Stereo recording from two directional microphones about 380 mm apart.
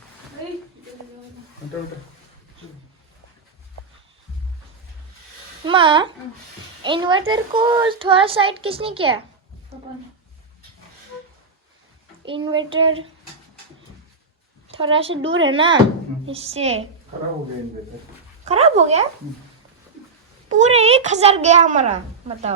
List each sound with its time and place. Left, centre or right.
5.6 s a child's voice: centre
12.2 s a child's voice: centre
14.7 s a child's voice: centre
15.3 s speech: right
15.5 s a child's voice: centre
18.4 s a child's voice: centre
20.6 s a child's voice: centre